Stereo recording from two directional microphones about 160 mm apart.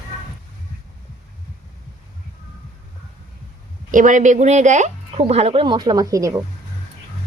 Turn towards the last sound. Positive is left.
turn(degrees=-20)  # may be behind; listen again after turning